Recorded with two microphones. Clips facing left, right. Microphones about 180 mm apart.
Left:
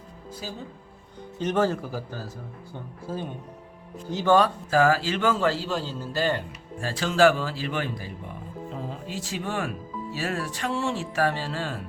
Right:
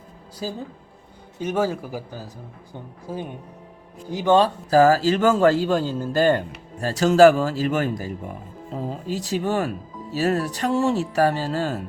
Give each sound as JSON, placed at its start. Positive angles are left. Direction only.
{"t": 1.4, "sound": "a man's voice", "side_deg": -10}
{"t": 4.4, "sound": "a man's voice", "side_deg": -35}